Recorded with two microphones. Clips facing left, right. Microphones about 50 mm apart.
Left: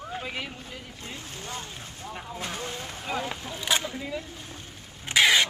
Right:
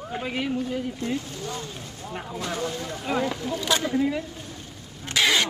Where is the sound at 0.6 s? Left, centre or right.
Right.